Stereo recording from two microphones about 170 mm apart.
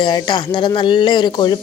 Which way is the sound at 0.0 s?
25° left (ahead or behind).